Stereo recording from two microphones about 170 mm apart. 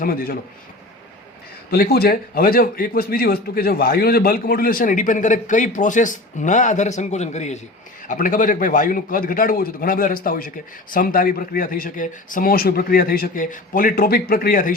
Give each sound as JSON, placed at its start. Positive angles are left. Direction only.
{"t": 0.0, "sound": "a man's voice", "side_deg": 60}
{"t": 1.7, "sound": "a man's voice", "side_deg": 65}
{"t": 8.0, "sound": "a man's voice", "side_deg": 50}